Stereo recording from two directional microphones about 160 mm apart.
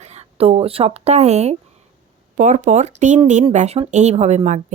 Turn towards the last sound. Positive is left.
turn(degrees=-45)  # may be behind; listen again after turning